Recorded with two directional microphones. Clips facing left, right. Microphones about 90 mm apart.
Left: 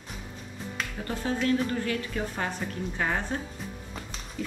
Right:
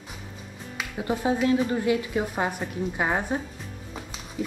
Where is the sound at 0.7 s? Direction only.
15° right (ahead or behind).